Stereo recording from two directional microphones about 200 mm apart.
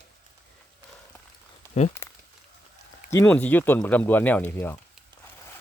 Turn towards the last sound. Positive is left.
turn(degrees=10)  # may be behind; listen again after turning